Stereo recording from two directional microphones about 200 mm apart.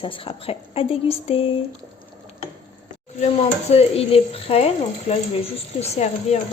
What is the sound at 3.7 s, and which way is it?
Speech, 30° left (ahead or behind).